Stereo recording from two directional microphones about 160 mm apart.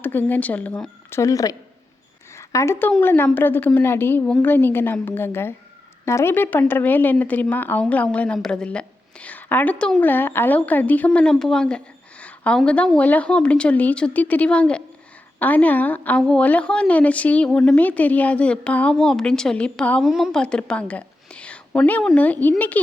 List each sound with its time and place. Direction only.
0.0 s speech: 10° left (ahead or behind)